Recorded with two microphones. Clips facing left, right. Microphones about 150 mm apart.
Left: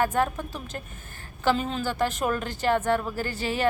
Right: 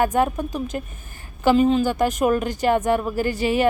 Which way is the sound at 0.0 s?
15° right (ahead or behind).